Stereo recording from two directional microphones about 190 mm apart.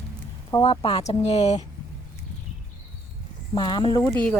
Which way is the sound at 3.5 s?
25° left (ahead or behind).